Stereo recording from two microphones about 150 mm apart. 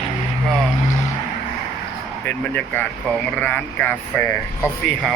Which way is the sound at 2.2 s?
15° left (ahead or behind).